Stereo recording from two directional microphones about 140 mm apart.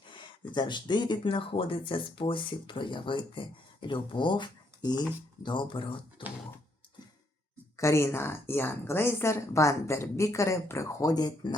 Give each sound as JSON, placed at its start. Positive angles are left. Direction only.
{"t": 0.5, "sound": "speech", "side_deg": 30}
{"t": 7.8, "sound": "speech", "side_deg": 20}